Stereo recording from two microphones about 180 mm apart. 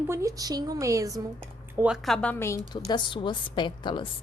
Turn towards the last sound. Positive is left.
turn(degrees=25)  # may be behind; listen again after turning